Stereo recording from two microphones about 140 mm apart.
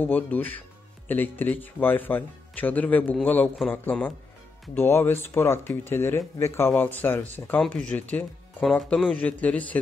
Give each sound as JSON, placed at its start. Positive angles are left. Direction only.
{"t": 0.0, "sound": "speech", "side_deg": 15}